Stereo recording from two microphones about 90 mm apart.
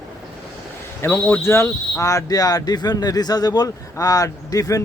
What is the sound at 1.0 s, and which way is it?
Speech, 20° left (ahead or behind).